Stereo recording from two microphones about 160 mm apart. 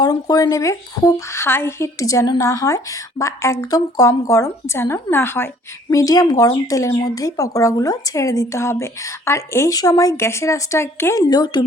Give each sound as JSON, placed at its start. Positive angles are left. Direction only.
{"t": 0.0, "sound": "speech", "side_deg": 25}